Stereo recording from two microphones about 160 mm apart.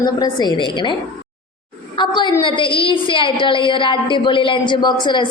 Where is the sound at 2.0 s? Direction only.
30° left (ahead or behind).